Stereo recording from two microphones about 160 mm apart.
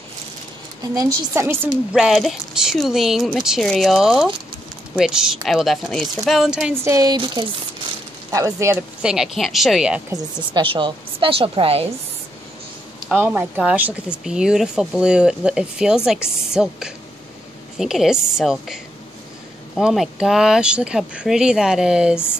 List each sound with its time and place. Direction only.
0.9 s speech: 20° right (ahead or behind)
1.9 s speech: 5° right (ahead or behind)
6.7 s speech: 20° right (ahead or behind)
9.0 s speech: 5° right (ahead or behind)
10.5 s a woman's voice: 30° right (ahead or behind)
13.1 s speech: 10° right (ahead or behind)